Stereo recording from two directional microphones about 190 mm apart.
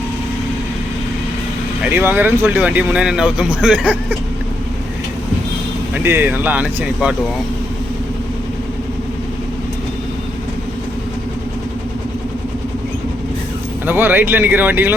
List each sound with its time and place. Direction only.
1.8 s speech: 10° right (ahead or behind)
5.9 s speech: 10° right (ahead or behind)
13.8 s speech: 10° right (ahead or behind)